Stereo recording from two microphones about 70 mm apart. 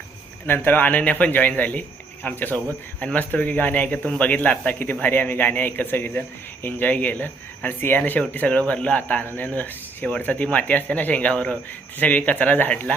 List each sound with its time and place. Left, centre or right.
0.4 s speech: left